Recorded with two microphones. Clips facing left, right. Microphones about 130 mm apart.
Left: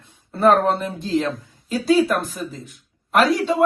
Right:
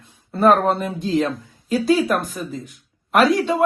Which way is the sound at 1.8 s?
Centre (ahead or behind).